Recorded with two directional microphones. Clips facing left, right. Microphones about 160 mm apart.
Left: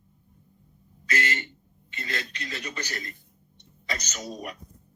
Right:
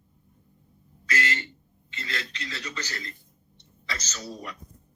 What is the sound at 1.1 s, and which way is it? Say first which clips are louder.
A man's voice: even; 20° left (ahead or behind).